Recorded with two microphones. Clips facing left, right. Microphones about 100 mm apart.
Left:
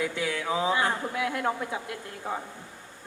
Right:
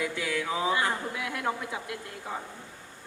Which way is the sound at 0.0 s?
30° left (ahead or behind).